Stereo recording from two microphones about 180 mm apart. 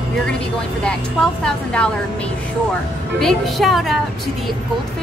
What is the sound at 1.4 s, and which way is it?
Speech, 5° left (ahead or behind).